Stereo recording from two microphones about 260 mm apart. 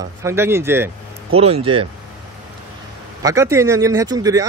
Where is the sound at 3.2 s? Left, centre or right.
Centre.